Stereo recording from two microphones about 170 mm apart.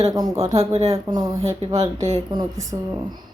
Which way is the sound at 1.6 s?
35° right (ahead or behind).